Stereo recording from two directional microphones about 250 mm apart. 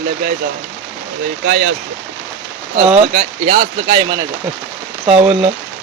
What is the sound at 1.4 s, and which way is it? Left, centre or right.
Speech, right.